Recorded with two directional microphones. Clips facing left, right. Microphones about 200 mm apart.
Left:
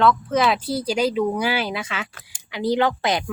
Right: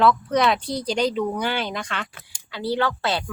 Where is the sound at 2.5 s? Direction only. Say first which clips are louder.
Left 4 dB; 15° left (ahead or behind).